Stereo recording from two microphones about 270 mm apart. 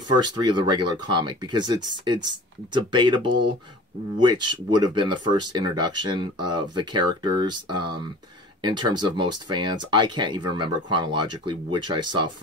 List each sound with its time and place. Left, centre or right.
0.1 s speech: centre